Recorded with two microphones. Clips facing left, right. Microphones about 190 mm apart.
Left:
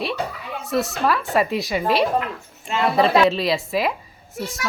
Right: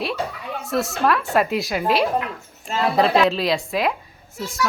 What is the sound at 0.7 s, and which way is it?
Speech, centre (ahead or behind).